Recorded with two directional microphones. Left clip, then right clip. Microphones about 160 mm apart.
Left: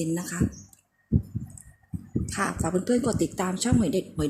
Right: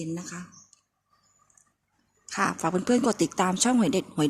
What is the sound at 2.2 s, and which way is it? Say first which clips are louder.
A woman's voice: right 3 dB; 15° right (ahead or behind).